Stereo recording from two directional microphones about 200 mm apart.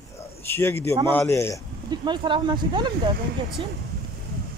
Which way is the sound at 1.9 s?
25° right (ahead or behind).